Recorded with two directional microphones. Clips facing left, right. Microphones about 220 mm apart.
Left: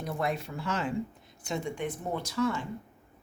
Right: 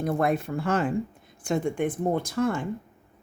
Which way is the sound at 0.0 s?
55° right (ahead or behind).